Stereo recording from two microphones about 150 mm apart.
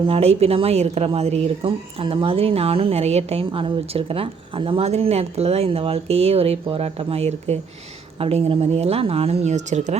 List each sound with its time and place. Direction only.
0.1 s speech: 45° right (ahead or behind)